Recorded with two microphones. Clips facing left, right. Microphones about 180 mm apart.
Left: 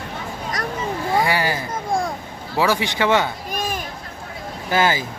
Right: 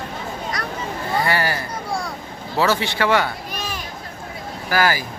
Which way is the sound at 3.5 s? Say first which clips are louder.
Left 4 dB; 50° left (ahead or behind).